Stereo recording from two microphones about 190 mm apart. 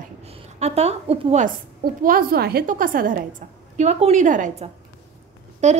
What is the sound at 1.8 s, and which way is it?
A child's voice, 50° right (ahead or behind).